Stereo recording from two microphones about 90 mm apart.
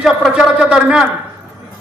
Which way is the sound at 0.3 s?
10° right (ahead or behind).